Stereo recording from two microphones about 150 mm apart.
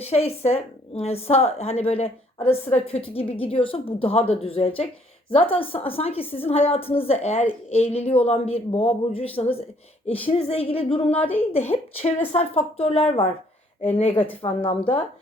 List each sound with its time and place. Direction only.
0.0 s a woman's voice: 45° left (ahead or behind)